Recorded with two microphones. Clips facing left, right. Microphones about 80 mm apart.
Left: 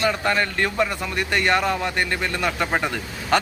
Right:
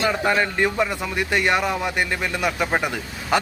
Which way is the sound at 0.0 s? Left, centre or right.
Centre.